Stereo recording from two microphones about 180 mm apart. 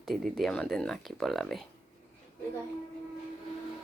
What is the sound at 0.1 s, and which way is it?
Speech, centre (ahead or behind).